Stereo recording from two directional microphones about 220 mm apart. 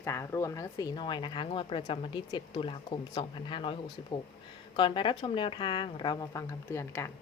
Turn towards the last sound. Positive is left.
turn(degrees=10)  # may be behind; listen again after turning